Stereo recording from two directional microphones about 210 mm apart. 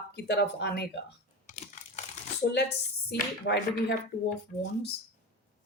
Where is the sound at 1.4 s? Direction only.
35° left (ahead or behind).